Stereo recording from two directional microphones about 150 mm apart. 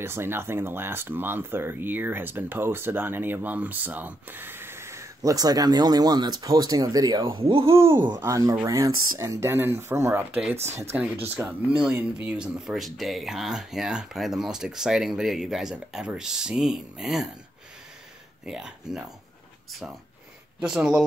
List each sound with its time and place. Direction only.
0.0 s speech: 15° right (ahead or behind); by 7.7 s 35° right (ahead or behind)
8.2 s speech: 20° right (ahead or behind); by 17.3 s centre (ahead or behind)
18.4 s speech: 5° right (ahead or behind)
20.6 s speech: 5° right (ahead or behind)